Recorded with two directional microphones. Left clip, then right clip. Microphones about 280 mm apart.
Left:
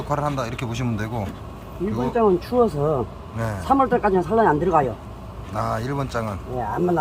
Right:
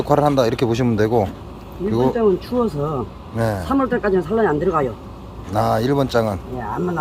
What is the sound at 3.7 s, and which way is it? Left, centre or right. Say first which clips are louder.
Speech: left 3 dB; centre.